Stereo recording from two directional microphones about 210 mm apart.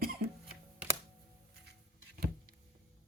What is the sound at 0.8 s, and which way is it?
Music, 5° right (ahead or behind).